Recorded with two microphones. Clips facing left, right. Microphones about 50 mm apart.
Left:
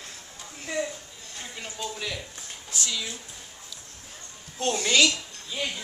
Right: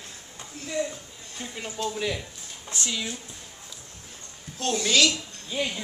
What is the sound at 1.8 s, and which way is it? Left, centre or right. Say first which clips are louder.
Speech: right 5 dB; centre.